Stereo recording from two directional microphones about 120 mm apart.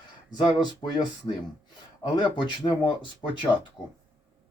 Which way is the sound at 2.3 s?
40° left (ahead or behind).